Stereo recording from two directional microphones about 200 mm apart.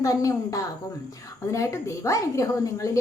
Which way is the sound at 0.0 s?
15° left (ahead or behind).